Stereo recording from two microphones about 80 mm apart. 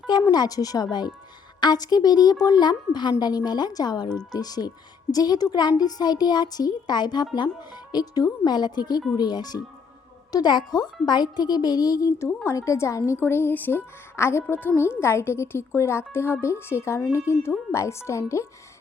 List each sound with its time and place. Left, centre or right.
0.2 s a woman's voice: left
13.1 s speech: left